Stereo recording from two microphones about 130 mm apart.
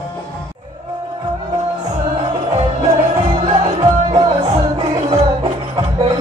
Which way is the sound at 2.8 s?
40° right (ahead or behind).